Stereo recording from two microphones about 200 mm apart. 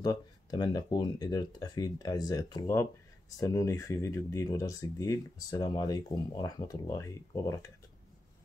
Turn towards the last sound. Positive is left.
turn(degrees=15)  # may be behind; listen again after turning